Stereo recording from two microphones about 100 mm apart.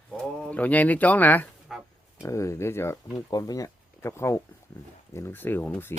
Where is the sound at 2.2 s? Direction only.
30° left (ahead or behind).